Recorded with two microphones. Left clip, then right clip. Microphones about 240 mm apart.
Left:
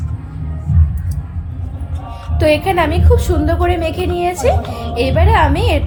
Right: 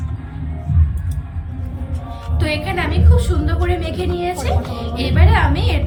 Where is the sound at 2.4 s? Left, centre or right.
Centre.